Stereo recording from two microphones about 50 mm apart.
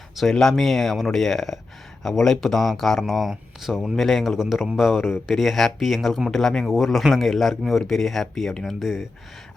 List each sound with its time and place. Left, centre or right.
0.2 s a man's voice: centre
6.7 s speech: centre